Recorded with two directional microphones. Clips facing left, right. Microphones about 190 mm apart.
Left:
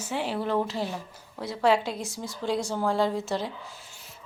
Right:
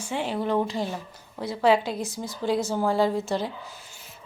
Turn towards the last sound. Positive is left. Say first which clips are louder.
# right 1 dB
turn(degrees=0)  # may be behind; listen again after turning